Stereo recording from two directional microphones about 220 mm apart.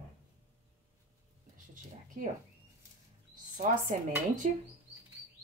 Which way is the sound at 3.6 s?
40° right (ahead or behind).